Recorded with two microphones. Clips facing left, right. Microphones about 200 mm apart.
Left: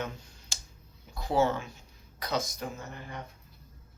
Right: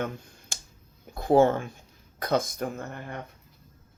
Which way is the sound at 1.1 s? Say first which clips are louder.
Right 7 dB; 55° right (ahead or behind).